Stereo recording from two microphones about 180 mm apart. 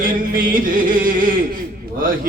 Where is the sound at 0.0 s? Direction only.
50° right (ahead or behind).